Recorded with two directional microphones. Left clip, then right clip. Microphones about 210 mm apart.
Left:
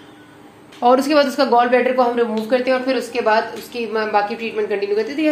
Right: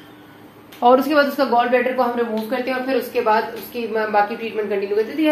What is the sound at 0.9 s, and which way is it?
Speech, 15° left (ahead or behind).